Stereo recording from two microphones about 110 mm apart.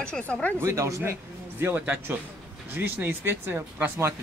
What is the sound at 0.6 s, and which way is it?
Speech, 30° right (ahead or behind).